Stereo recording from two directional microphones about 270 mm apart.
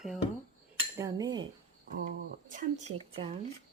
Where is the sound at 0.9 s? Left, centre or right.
Centre.